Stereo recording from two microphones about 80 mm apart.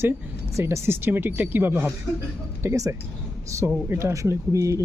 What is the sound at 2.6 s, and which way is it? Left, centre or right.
Speech, right.